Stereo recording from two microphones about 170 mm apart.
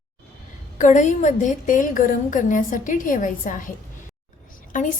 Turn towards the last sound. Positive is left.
turn(degrees=50)  # may be behind; listen again after turning